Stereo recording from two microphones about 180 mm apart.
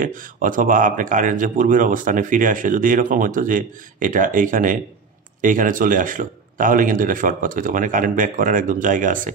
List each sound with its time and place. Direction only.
0.0 s speech: 50° right (ahead or behind)